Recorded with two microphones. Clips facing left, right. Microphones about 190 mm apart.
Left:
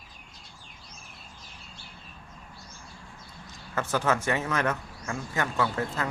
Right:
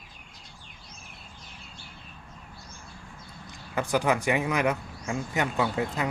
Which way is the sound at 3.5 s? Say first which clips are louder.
Right 2 dB; 15° right (ahead or behind).